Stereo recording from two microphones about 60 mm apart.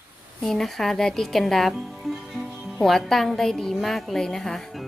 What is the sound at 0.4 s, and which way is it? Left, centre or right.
A woman's voice, centre.